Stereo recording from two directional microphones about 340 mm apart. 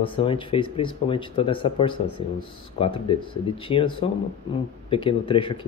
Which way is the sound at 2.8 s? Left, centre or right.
Centre.